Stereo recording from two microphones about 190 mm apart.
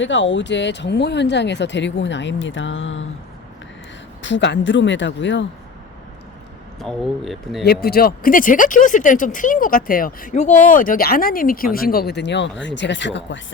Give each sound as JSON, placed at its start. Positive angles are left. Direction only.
{"t": 0.0, "sound": "speech", "side_deg": 75}
{"t": 4.2, "sound": "speech", "side_deg": 70}
{"t": 6.8, "sound": "speech", "side_deg": 0}
{"t": 7.6, "sound": "speech", "side_deg": 55}